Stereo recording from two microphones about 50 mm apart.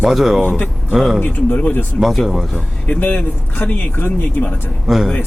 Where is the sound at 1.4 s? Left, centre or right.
Left.